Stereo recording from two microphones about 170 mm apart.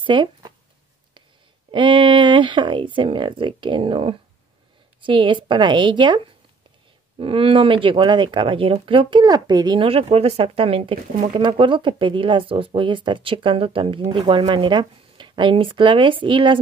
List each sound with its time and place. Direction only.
0.0 s speech: 25° right (ahead or behind)
1.7 s speech: 30° right (ahead or behind)